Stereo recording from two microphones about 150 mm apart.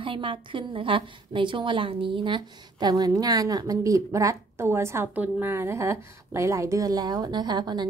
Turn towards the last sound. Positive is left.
turn(degrees=-30)  # may be behind; listen again after turning